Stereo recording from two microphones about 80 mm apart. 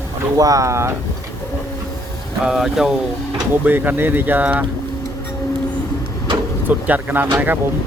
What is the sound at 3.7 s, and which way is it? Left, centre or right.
Speech, right.